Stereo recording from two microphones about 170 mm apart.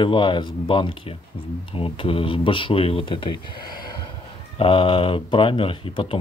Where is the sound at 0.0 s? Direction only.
25° left (ahead or behind).